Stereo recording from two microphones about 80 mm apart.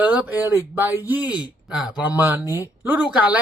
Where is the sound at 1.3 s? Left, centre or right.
Centre.